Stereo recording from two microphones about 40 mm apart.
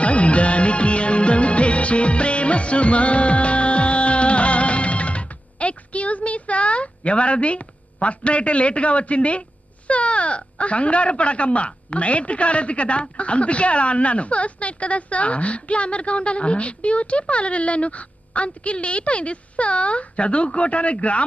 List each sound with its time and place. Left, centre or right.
0.0 s music: left
8.0 s speech: left